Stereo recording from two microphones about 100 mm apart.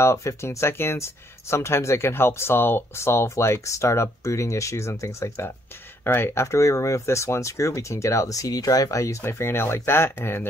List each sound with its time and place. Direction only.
0.0 s speech: 30° left (ahead or behind)